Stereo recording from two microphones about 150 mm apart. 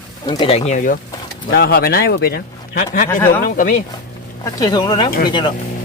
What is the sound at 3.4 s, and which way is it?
Speech, 70° left (ahead or behind).